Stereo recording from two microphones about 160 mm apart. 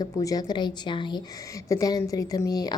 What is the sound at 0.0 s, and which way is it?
A woman's voice, 20° left (ahead or behind).